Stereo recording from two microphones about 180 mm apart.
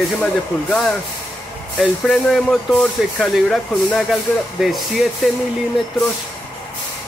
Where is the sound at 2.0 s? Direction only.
Centre (ahead or behind).